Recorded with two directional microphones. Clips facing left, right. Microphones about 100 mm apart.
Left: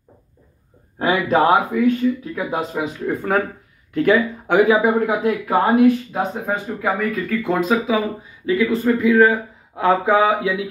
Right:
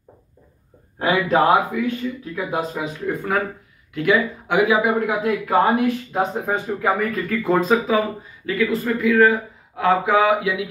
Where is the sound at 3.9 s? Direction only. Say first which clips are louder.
Left 3 dB; 40° left (ahead or behind).